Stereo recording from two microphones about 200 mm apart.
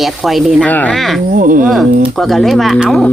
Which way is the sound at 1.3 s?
45° right (ahead or behind).